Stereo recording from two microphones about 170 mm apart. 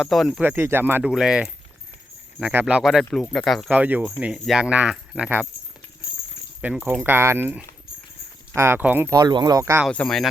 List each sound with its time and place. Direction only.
0.0 s speech: centre (ahead or behind)
0.4 s speech: 15° right (ahead or behind); by 3.7 s centre (ahead or behind)
3.7 s speech: 10° right (ahead or behind)
6.6 s speech: 10° right (ahead or behind)
9.1 s speech: 25° right (ahead or behind)
9.8 s speech: 5° left (ahead or behind)